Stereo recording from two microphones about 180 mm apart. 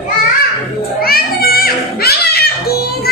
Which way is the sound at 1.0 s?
55° left (ahead or behind).